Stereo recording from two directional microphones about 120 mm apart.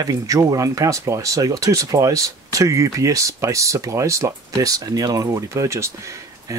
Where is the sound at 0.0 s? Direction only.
30° right (ahead or behind).